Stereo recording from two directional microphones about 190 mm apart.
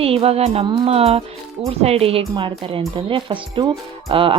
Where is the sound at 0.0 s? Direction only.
30° right (ahead or behind).